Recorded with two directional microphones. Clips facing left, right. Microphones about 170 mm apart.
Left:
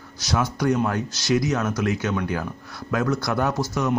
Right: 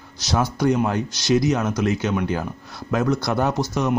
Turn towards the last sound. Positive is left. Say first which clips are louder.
# right 2 dB
turn(degrees=-20)  # may be behind; listen again after turning